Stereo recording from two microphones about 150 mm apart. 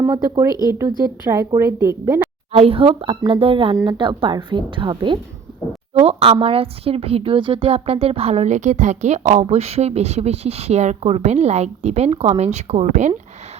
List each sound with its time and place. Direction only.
0.0 s speech: 25° right (ahead or behind)
2.5 s a woman's voice: 40° right (ahead or behind)
5.9 s speech: 45° right (ahead or behind)